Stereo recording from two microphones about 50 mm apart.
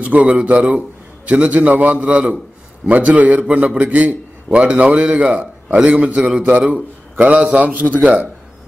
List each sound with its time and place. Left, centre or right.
0.0 s a man's voice: right
4.5 s a man's voice: right
6.7 s a man's voice: right